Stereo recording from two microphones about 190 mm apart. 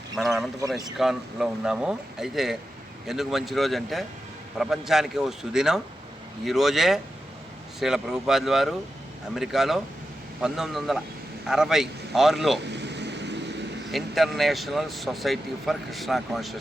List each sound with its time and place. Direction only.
0.2 s a sound: centre (ahead or behind)
0.7 s speech: centre (ahead or behind)
12.7 s vehicle: 65° right (ahead or behind)
13.9 s speech: centre (ahead or behind)